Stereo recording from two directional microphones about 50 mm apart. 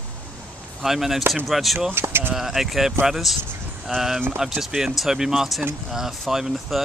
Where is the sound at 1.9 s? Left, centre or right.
Right.